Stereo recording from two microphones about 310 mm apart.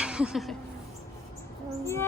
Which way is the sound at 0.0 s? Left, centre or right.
Centre.